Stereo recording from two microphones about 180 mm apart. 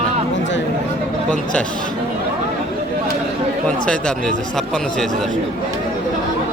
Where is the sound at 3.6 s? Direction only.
5° left (ahead or behind).